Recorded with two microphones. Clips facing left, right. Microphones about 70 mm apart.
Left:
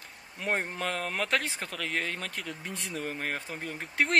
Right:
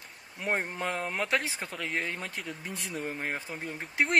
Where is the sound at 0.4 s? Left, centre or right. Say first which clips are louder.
Even; centre.